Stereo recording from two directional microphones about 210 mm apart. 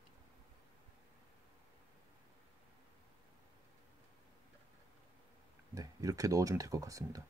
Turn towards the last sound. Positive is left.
turn(degrees=-15)  # may be behind; listen again after turning